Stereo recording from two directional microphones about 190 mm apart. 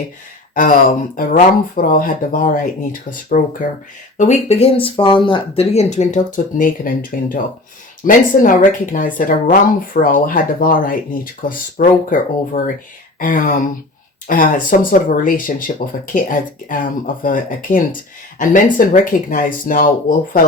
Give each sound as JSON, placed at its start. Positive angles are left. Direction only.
{"t": 0.5, "sound": "speech", "side_deg": 45}